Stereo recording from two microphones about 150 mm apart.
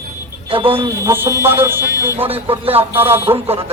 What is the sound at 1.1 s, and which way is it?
Speech, 20° right (ahead or behind).